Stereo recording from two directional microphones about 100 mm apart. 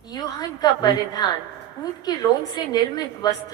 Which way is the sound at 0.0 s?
40° left (ahead or behind).